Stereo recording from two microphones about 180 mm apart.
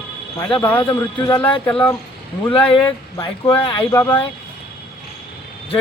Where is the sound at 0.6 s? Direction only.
10° left (ahead or behind).